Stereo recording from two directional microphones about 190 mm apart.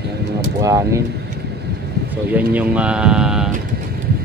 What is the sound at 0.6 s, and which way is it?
Speech, 15° right (ahead or behind).